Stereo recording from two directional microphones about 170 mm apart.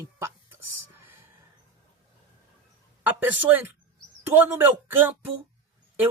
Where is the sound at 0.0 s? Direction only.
15° right (ahead or behind).